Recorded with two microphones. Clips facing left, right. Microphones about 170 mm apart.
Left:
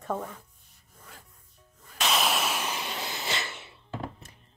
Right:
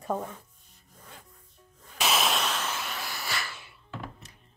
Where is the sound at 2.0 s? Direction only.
5° right (ahead or behind); by 4.1 s 30° left (ahead or behind).